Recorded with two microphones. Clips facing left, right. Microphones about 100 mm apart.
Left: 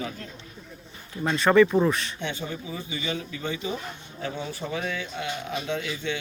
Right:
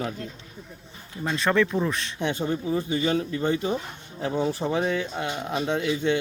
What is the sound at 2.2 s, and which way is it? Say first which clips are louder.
Speech: right 6 dB; 45° right (ahead or behind).